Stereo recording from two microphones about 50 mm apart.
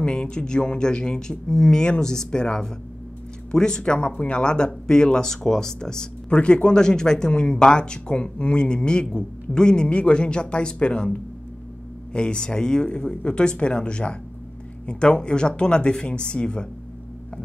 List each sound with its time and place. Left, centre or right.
0.0 s speech: centre
12.1 s speech: centre